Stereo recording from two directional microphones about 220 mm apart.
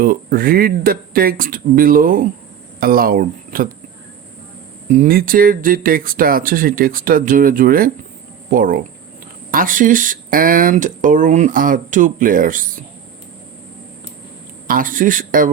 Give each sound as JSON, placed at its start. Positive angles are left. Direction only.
{"t": 0.0, "sound": "speech", "side_deg": -40}
{"t": 4.9, "sound": "speech", "side_deg": -40}
{"t": 14.7, "sound": "speech", "side_deg": -40}